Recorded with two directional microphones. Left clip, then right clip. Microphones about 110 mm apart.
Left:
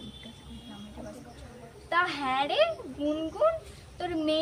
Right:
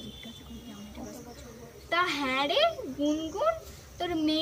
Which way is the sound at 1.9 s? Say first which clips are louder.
Left 1 dB; 20° left (ahead or behind).